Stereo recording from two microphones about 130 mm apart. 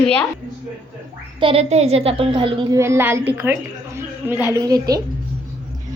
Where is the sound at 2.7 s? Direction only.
20° right (ahead or behind).